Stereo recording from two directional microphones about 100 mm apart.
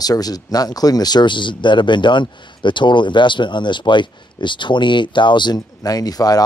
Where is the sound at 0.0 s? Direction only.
40° left (ahead or behind).